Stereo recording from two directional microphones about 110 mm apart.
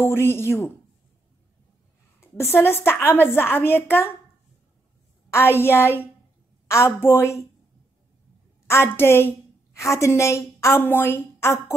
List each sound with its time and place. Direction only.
0.0 s a woman's voice: 20° left (ahead or behind)
2.1 s a woman's voice: 20° left (ahead or behind)
5.3 s a woman's voice: 20° left (ahead or behind)
8.6 s a woman's voice: 20° left (ahead or behind)